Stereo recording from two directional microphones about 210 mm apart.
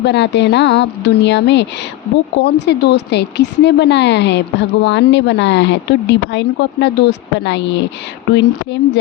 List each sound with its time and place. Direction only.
0.0 s speech: 55° left (ahead or behind)